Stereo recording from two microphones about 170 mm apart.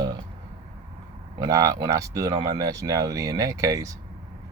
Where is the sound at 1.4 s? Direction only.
20° right (ahead or behind).